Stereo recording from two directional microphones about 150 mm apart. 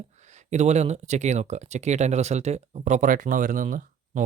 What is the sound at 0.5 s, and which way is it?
Speech, 50° right (ahead or behind).